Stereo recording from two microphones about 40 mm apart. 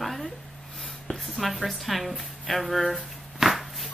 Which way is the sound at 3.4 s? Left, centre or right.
Centre.